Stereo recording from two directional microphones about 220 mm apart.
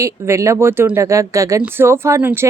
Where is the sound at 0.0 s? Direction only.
15° right (ahead or behind).